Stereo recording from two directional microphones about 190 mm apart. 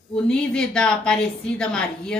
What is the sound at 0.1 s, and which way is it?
A woman's voice, 5° left (ahead or behind).